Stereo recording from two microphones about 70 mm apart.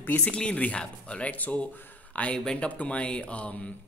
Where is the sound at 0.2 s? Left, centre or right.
Centre.